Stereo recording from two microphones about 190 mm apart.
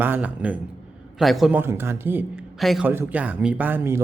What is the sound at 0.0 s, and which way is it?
Speech, 10° right (ahead or behind).